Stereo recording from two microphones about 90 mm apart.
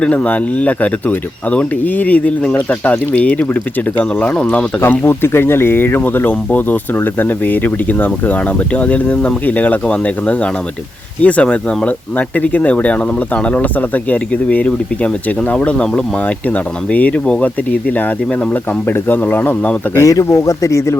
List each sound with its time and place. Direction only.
0.0 s speech: 15° left (ahead or behind)
4.8 s speech: 25° left (ahead or behind)
20.0 s speech: 35° left (ahead or behind)